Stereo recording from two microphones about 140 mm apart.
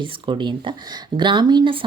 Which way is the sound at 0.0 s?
35° right (ahead or behind).